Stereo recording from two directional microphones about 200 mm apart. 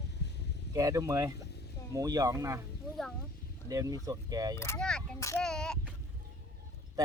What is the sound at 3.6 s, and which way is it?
Speech, 20° right (ahead or behind).